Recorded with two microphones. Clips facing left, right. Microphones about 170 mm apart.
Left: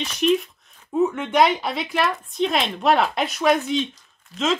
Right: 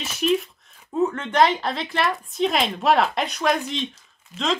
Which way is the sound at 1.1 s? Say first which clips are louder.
Left 1 dB; 10° left (ahead or behind).